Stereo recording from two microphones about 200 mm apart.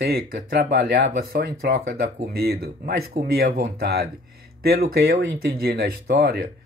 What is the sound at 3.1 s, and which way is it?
Speech, 30° right (ahead or behind).